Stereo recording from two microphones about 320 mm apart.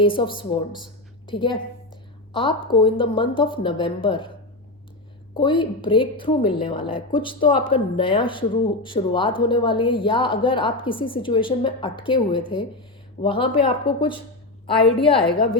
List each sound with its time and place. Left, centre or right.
0.0 s speech: centre
5.4 s speech: centre